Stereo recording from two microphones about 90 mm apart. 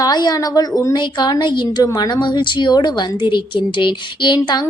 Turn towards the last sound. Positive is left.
turn(degrees=55)  # may be behind; listen again after turning